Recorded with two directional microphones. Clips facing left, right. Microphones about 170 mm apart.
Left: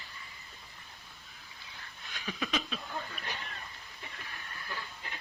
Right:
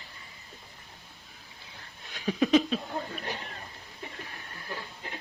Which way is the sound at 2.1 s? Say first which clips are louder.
Right 12 dB; 35° right (ahead or behind).